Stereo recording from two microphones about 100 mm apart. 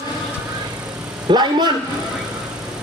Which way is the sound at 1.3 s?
45° right (ahead or behind).